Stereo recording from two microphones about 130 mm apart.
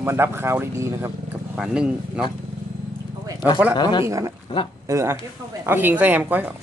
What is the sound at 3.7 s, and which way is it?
Speech, 35° left (ahead or behind).